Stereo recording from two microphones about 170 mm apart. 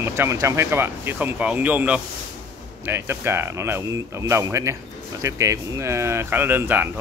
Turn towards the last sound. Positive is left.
turn(degrees=-10)  # may be behind; listen again after turning